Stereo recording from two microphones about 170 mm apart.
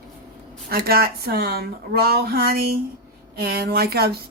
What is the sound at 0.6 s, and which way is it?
Speech, 65° right (ahead or behind).